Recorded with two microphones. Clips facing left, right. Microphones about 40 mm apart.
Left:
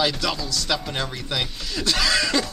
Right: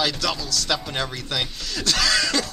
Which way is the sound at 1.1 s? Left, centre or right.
Centre.